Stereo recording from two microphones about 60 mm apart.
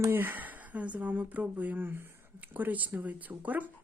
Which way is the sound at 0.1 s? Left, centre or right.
Right.